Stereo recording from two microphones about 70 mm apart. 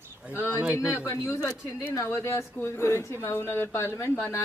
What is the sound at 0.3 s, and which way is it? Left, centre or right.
Speech, left.